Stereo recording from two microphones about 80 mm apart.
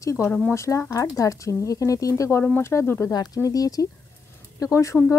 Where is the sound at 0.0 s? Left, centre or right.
Left.